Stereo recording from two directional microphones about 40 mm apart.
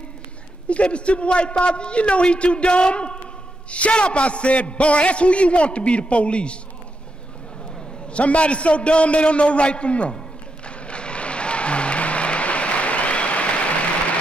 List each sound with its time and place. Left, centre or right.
0.7 s a man's voice: left
8.1 s a man's voice: left
10.9 s music: left